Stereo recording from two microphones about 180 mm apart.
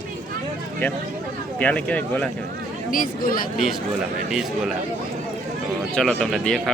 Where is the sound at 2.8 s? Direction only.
50° left (ahead or behind).